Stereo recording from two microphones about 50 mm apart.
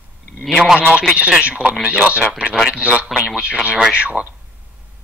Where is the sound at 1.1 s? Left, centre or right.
Right.